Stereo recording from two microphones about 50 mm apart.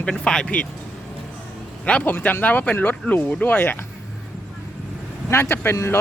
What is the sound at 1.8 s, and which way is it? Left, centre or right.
Speech, left.